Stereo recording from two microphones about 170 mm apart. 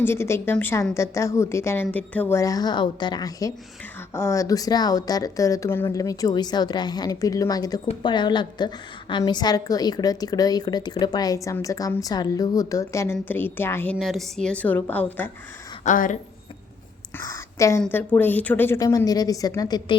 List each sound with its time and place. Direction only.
0.0 s speech: 15° left (ahead or behind)
2.4 s a woman's voice: 20° left (ahead or behind)
14.0 s speech: centre (ahead or behind)
15.8 s speech: 50° left (ahead or behind)
17.2 s speech: 15° left (ahead or behind)